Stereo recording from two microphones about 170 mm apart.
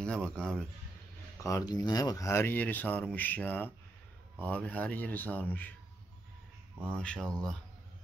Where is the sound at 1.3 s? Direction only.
20° left (ahead or behind).